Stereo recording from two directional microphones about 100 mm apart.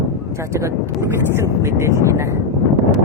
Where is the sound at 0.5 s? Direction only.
30° right (ahead or behind).